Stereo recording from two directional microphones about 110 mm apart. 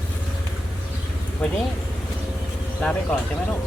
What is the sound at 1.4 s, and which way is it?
Speech, 10° left (ahead or behind).